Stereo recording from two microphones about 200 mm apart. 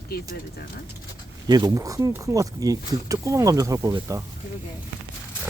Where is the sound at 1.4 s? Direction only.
20° right (ahead or behind).